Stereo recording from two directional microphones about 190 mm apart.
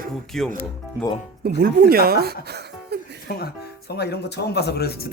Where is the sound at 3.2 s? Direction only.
55° left (ahead or behind).